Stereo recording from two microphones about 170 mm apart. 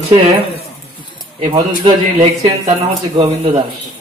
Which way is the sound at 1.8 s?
25° right (ahead or behind).